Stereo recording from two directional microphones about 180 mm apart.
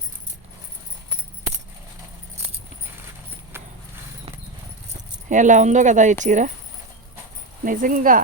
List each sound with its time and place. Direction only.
3.5 s horse: 15° right (ahead or behind)
5.3 s speech: 45° right (ahead or behind)
7.6 s speech: 50° right (ahead or behind)